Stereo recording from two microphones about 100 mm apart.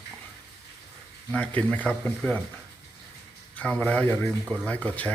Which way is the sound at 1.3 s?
15° left (ahead or behind).